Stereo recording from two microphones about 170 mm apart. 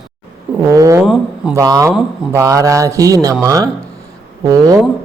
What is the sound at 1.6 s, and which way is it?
A woman's voice, 20° right (ahead or behind).